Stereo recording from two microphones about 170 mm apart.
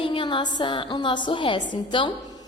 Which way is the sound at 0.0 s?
30° left (ahead or behind).